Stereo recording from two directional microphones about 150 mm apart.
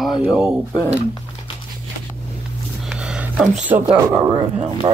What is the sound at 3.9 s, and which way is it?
Speech, 25° right (ahead or behind).